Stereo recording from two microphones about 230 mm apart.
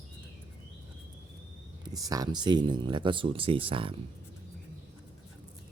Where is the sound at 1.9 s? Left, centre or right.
Centre.